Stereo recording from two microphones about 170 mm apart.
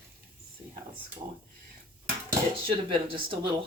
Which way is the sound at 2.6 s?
30° right (ahead or behind).